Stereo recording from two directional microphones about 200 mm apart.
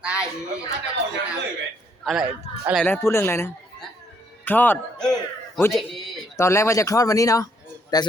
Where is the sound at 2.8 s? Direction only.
10° left (ahead or behind).